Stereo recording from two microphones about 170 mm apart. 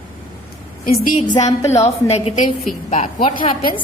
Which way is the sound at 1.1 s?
50° left (ahead or behind).